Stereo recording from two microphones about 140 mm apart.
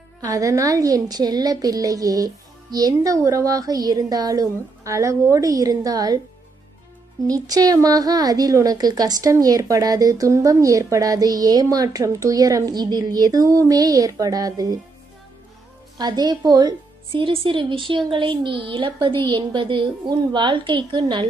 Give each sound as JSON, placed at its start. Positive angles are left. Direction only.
{"t": 0.2, "sound": "a woman's voice", "side_deg": -25}
{"t": 7.3, "sound": "a woman's voice", "side_deg": -25}
{"t": 16.0, "sound": "a woman's voice", "side_deg": -30}